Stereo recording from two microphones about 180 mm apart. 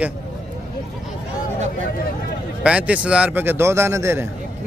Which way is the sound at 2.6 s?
5° right (ahead or behind).